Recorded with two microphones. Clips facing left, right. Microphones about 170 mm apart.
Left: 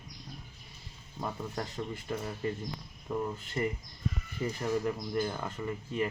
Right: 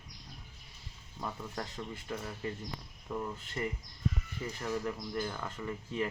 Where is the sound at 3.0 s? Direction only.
15° left (ahead or behind).